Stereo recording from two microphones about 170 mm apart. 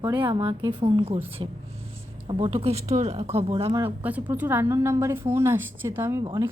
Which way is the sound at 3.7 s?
10° right (ahead or behind).